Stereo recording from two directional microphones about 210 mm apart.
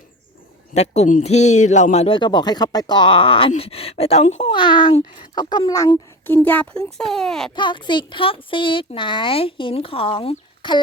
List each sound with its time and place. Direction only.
0.7 s a man's voice: 30° left (ahead or behind); by 7.5 s centre (ahead or behind)
7.5 s a man's voice: 20° left (ahead or behind)